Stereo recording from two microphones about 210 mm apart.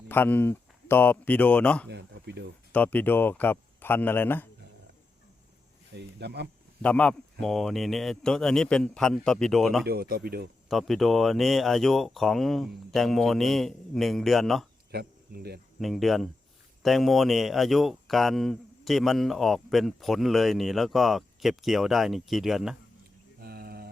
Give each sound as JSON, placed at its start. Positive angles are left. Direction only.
{"t": 0.1, "sound": "speech", "side_deg": 10}
{"t": 1.9, "sound": "speech", "side_deg": -55}
{"t": 2.7, "sound": "speech", "side_deg": 10}
{"t": 6.1, "sound": "speech", "side_deg": -50}
{"t": 6.8, "sound": "speech", "side_deg": 5}
{"t": 9.8, "sound": "speech", "side_deg": -45}
{"t": 10.7, "sound": "speech", "side_deg": 0}
{"t": 14.9, "sound": "speech", "side_deg": -50}
{"t": 15.8, "sound": "speech", "side_deg": 0}
{"t": 23.4, "sound": "a sound", "side_deg": -45}